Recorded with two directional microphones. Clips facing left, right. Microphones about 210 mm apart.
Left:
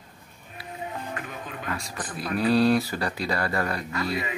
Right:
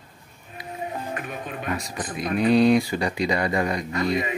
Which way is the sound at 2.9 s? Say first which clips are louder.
Right 4 dB; 15° right (ahead or behind).